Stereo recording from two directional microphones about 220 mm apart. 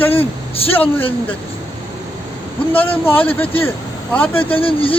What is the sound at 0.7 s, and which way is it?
Speech, 10° left (ahead or behind).